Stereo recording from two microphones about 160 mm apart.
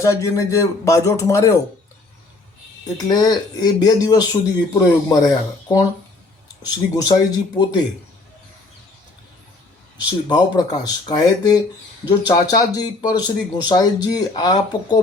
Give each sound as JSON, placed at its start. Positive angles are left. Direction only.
{"t": 0.0, "sound": "speech", "side_deg": 20}
{"t": 3.1, "sound": "speech", "side_deg": 25}
{"t": 10.2, "sound": "speech", "side_deg": 25}